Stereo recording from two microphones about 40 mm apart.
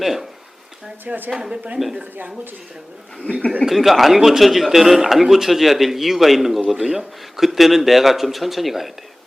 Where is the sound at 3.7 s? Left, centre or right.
Centre.